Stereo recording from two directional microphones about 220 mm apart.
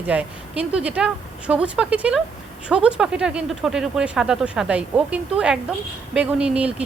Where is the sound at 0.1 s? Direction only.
5° right (ahead or behind).